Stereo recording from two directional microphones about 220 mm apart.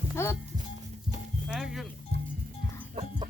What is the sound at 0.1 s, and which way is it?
Music, 10° left (ahead or behind).